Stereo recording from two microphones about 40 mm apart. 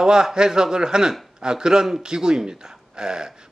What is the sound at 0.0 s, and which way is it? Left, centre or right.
A man's voice, centre.